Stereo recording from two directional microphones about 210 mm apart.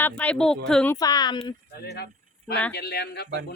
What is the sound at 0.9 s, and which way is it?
Speech, 20° left (ahead or behind).